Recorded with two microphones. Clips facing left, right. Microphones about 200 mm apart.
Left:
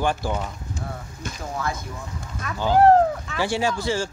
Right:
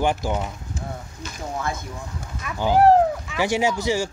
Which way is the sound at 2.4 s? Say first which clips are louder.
Even; 10° right (ahead or behind).